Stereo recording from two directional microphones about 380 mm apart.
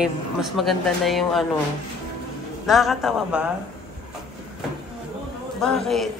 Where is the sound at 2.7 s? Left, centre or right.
Centre.